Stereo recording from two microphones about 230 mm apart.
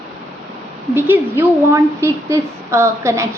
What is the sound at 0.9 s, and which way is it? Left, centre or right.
A woman's voice, centre.